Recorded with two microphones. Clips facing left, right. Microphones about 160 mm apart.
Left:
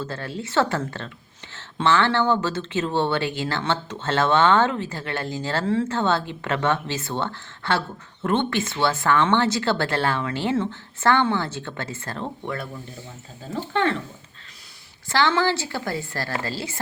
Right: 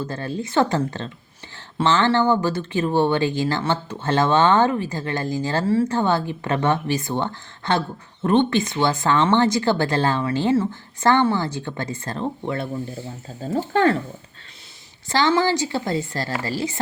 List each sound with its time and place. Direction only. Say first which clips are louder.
0.0 s speech: right 3 dB; 15° right (ahead or behind)
13.4 s speech: right 5 dB; 40° right (ahead or behind)
15.1 s speech: right 2 dB; 15° right (ahead or behind)